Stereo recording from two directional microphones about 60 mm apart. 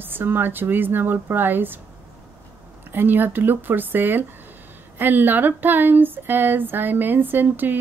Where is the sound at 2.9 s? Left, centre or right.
Right.